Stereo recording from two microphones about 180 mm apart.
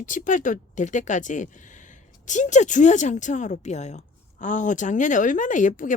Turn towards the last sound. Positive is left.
turn(degrees=45)  # may be behind; listen again after turning